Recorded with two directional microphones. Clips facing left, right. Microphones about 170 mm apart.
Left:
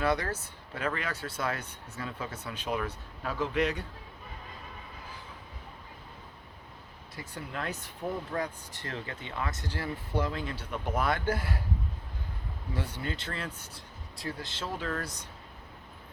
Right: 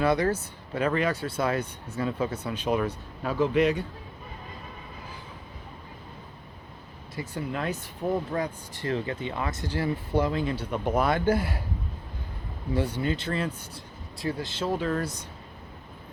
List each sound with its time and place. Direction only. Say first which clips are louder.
0.0 s speech: right 6 dB; 20° right (ahead or behind)
7.2 s speech: right 7 dB; 10° right (ahead or behind)
10.1 s speech: right 5 dB; 30° right (ahead or behind)
10.3 s speech: right 7 dB; 15° right (ahead or behind)
12.7 s speech: right 9 dB; 15° right (ahead or behind)